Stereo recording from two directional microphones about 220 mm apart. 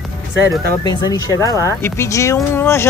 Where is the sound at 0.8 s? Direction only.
15° left (ahead or behind).